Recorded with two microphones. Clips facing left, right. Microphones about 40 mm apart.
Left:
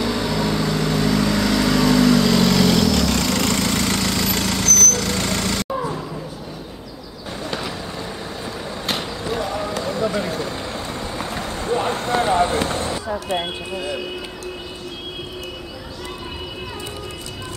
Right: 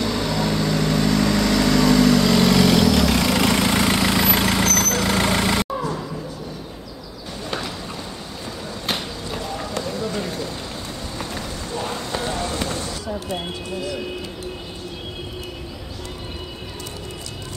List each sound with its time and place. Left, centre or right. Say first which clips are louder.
0.0 s vehicle: left 1 dB; centre; by 5.7 s right
9.8 s run: left 4 dB; left
11.1 s vehicle: left 1 dB; left
11.6 s a sound: left 8 dB; left